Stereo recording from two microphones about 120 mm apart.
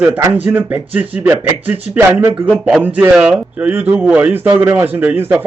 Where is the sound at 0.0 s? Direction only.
15° right (ahead or behind).